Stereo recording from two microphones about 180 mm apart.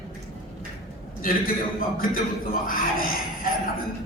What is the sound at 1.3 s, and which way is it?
Speech, 50° left (ahead or behind).